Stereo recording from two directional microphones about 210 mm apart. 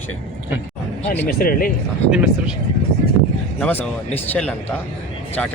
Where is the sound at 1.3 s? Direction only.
45° left (ahead or behind).